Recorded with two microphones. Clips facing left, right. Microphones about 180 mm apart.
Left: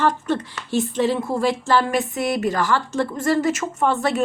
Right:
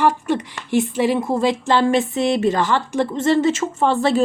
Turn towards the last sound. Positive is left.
turn(degrees=-30)  # may be behind; listen again after turning